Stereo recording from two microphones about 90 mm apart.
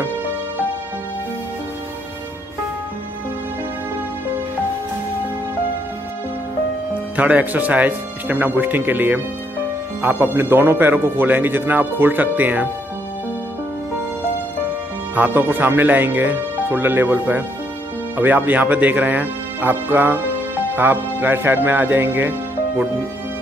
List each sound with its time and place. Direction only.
6.9 s speech: 15° right (ahead or behind)
15.1 s speech: 20° right (ahead or behind)